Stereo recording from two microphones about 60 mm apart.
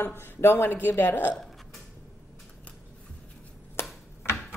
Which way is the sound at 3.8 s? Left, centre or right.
Left.